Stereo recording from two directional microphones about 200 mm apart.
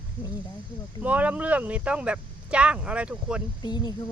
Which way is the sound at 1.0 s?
5° right (ahead or behind).